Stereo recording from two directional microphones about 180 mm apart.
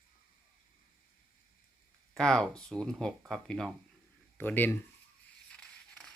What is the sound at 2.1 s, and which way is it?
Speech, 5° left (ahead or behind).